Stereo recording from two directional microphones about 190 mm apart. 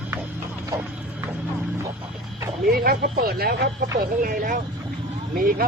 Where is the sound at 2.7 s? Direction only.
50° right (ahead or behind).